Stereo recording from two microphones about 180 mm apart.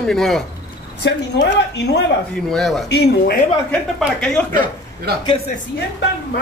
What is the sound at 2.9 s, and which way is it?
Speech, 65° left (ahead or behind).